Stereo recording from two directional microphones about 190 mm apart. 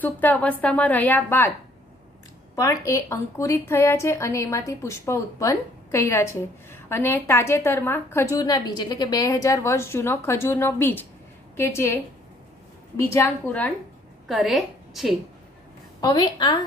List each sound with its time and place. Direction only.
0.0 s a woman's voice: 10° left (ahead or behind)
2.5 s a woman's voice: 15° left (ahead or behind)
13.1 s a woman's voice: 10° left (ahead or behind)
16.0 s a woman's voice: 25° left (ahead or behind)